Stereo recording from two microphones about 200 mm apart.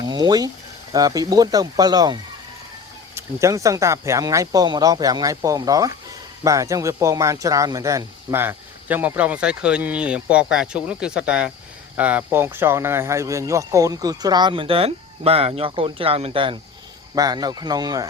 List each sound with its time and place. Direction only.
0.0 s speech: 20° right (ahead or behind)
3.2 s speech: 15° right (ahead or behind)